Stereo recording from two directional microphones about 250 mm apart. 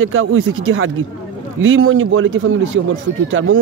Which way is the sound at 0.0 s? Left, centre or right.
Right.